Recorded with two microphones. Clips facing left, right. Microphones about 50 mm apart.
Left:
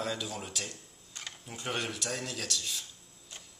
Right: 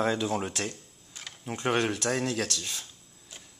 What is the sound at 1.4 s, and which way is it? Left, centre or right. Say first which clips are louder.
Speech: right 11 dB; right.